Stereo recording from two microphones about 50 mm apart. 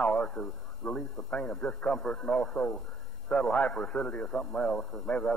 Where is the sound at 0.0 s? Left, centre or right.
Left.